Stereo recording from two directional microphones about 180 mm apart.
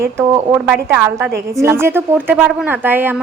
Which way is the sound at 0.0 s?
15° right (ahead or behind).